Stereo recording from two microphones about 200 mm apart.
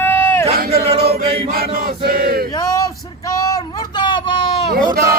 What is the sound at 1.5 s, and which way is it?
Chant, 45° right (ahead or behind).